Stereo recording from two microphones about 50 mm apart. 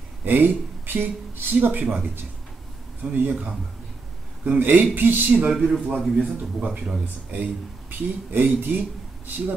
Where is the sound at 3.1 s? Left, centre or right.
Right.